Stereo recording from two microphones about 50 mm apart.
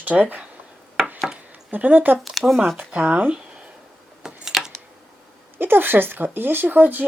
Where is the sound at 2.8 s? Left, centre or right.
Right.